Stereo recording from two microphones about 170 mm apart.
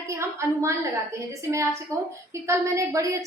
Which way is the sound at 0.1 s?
15° right (ahead or behind).